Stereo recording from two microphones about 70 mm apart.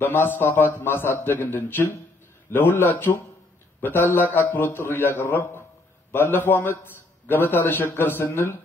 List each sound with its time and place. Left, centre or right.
0.0 s a man's voice: left